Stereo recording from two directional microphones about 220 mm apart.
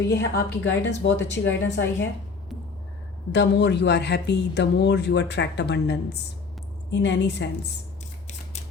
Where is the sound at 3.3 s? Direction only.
50° left (ahead or behind).